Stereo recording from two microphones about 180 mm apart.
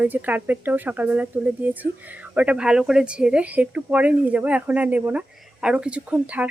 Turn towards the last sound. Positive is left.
turn(degrees=-10)  # may be behind; listen again after turning